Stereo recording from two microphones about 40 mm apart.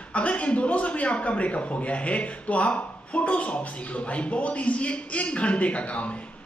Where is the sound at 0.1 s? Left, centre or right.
Left.